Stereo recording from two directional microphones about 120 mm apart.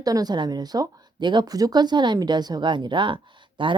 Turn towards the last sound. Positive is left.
turn(degrees=-45)  # may be behind; listen again after turning